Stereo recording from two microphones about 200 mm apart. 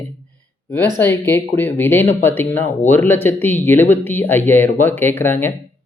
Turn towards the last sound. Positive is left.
turn(degrees=10)  # may be behind; listen again after turning